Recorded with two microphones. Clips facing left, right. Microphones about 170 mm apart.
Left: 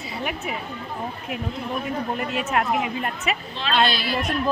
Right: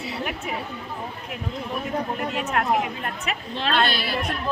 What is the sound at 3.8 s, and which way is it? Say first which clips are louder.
Speech: left 1 dB; 60° right (ahead or behind).